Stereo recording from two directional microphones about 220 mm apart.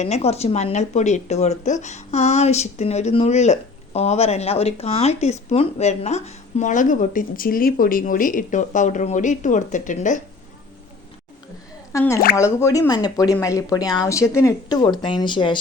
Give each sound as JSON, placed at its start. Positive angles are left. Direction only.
{"t": 0.0, "sound": "speech", "side_deg": 30}
{"t": 11.9, "sound": "speech", "side_deg": 15}